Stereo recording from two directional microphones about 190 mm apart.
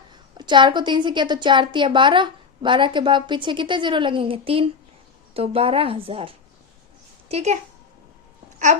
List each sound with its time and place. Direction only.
0.3 s a woman's voice: 25° right (ahead or behind)
8.5 s babbling: 40° right (ahead or behind)